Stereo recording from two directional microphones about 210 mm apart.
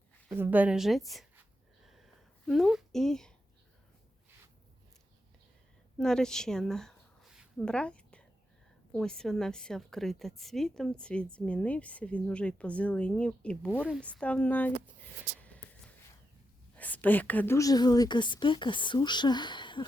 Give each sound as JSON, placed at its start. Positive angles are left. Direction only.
{"t": 0.3, "sound": "a woman's voice", "side_deg": -10}
{"t": 1.8, "sound": "a sound", "side_deg": 0}
{"t": 2.5, "sound": "a woman's voice", "side_deg": 0}
{"t": 6.0, "sound": "a woman's voice", "side_deg": 5}
{"t": 13.7, "sound": "speech", "side_deg": -5}
{"t": 14.0, "sound": "a woman's voice", "side_deg": 5}
{"t": 16.7, "sound": "a woman's voice", "side_deg": 5}